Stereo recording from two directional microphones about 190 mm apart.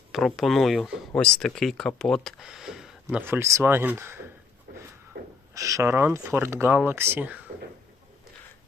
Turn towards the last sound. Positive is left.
turn(degrees=-10)  # may be behind; listen again after turning